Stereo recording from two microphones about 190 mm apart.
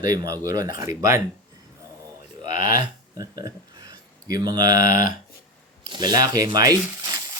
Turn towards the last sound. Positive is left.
turn(degrees=-20)  # may be behind; listen again after turning